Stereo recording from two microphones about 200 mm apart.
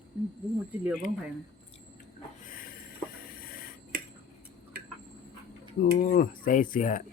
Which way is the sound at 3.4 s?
50° left (ahead or behind).